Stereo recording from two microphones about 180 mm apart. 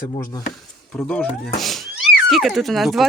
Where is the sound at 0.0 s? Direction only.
20° left (ahead or behind).